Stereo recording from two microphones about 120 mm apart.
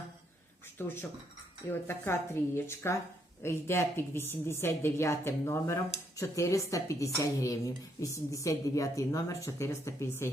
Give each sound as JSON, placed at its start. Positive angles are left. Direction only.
{"t": 0.8, "sound": "speech", "side_deg": 20}